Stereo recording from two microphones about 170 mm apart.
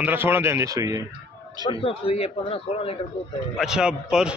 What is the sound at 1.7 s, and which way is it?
A man's voice, 35° left (ahead or behind).